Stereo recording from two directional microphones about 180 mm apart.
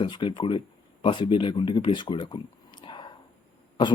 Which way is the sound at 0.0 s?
25° left (ahead or behind).